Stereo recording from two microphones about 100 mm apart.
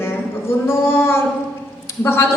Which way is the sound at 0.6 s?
25° left (ahead or behind).